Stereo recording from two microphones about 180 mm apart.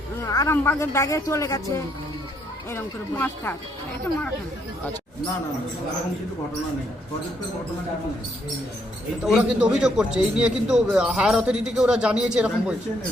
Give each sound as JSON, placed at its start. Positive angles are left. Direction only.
{"t": 0.3, "sound": "a woman's voice", "side_deg": 15}
{"t": 2.7, "sound": "a woman's voice", "side_deg": 10}
{"t": 9.2, "sound": "a man's voice", "side_deg": -5}